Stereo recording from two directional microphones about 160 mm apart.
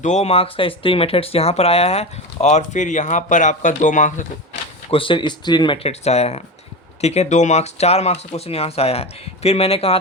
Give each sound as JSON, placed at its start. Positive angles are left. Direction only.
{"t": 0.0, "sound": "speech", "side_deg": 45}
{"t": 4.9, "sound": "speech", "side_deg": 35}